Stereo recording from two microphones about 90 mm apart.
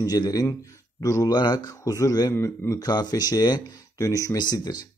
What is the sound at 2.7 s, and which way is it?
Speech, 50° left (ahead or behind).